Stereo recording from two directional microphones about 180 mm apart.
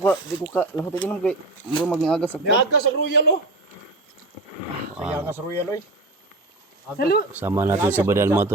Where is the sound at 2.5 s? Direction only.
65° left (ahead or behind).